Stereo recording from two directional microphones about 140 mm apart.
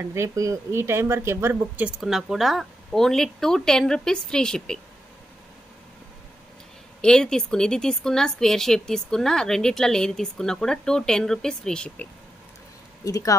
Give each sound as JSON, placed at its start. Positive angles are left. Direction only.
{"t": 0.0, "sound": "speech", "side_deg": -20}
{"t": 2.0, "sound": "a woman's voice", "side_deg": 0}
{"t": 7.0, "sound": "a woman's voice", "side_deg": 5}
{"t": 13.0, "sound": "speech", "side_deg": 25}